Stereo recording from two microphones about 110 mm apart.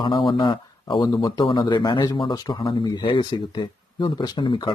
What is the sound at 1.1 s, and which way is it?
Speech, 35° left (ahead or behind).